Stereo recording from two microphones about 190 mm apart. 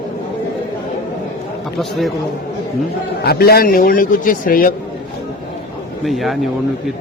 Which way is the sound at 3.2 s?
55° left (ahead or behind).